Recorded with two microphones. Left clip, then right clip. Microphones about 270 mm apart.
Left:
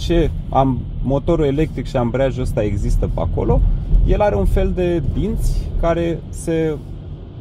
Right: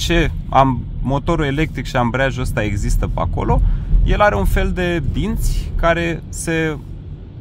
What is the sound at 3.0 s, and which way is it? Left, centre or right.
Speech, right.